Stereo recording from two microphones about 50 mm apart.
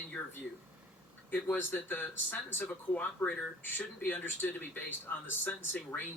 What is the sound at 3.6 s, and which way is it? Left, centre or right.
Speech, left.